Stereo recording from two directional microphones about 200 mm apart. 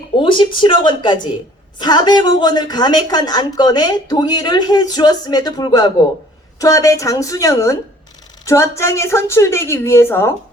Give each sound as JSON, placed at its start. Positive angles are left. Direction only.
{"t": 0.2, "sound": "a woman's voice", "side_deg": 25}